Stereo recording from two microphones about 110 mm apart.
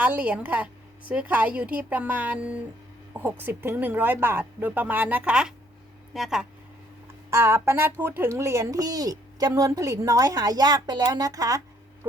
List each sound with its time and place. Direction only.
0.0 s a woman's voice: 15° right (ahead or behind)
7.3 s a woman's voice: 25° right (ahead or behind)